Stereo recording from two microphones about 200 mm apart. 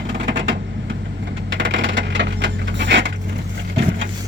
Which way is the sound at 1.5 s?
65° right (ahead or behind).